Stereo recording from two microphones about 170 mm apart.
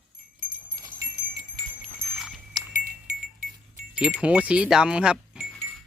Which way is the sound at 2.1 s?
Centre (ahead or behind).